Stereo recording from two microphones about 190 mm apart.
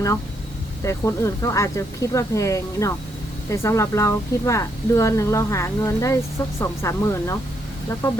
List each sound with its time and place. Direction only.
0.8 s speech: 15° left (ahead or behind)